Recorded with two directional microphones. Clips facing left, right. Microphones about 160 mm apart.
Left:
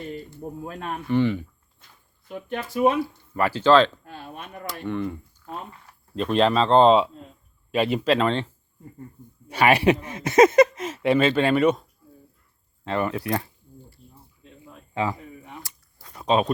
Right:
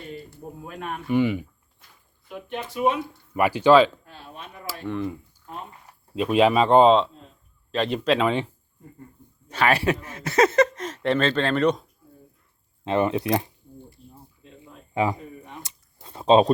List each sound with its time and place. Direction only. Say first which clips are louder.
1.0 s speech: even; 10° right (ahead or behind)
3.0 s speech: right 1 dB; 15° right (ahead or behind)
4.0 s a sound: left 4 dB; 55° left (ahead or behind)
4.6 s speech: even; centre (ahead or behind)
6.8 s speech: even; 5° left (ahead or behind)
9.5 s speech: left 3 dB; 15° left (ahead or behind)
12.8 s speech: right 3 dB; 20° right (ahead or behind)
14.9 s speech: right 3 dB; 20° right (ahead or behind)
15.6 s a sound: right 2 dB; 25° right (ahead or behind)